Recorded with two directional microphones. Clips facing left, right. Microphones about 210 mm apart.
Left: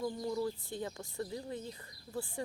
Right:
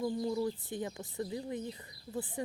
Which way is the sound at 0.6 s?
20° right (ahead or behind).